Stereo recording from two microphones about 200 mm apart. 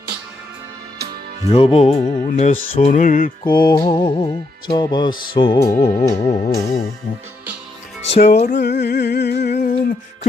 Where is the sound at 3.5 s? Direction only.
20° left (ahead or behind).